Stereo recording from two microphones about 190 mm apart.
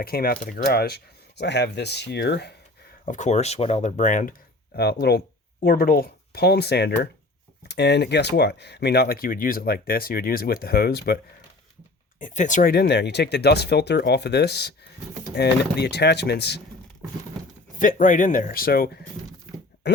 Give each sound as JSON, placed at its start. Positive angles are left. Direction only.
{"t": 0.0, "sound": "speech", "side_deg": 50}
{"t": 3.1, "sound": "speech", "side_deg": 40}
{"t": 4.7, "sound": "speech", "side_deg": 60}
{"t": 12.2, "sound": "speech", "side_deg": 40}
{"t": 17.7, "sound": "speech", "side_deg": 45}